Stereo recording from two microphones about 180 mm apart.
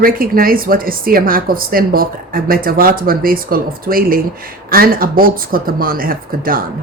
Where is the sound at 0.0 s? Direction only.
55° right (ahead or behind).